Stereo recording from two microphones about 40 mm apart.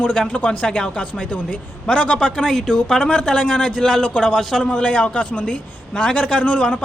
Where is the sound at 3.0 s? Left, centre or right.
Left.